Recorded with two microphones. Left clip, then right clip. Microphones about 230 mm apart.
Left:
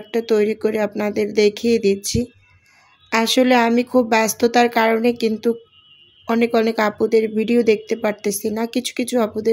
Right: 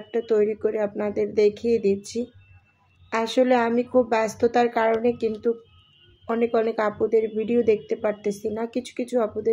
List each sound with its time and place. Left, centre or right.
0.1 s speech: left
3.1 s speech: left